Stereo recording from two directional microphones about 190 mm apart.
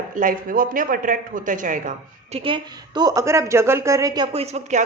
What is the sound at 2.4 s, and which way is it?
A woman's voice, 25° right (ahead or behind).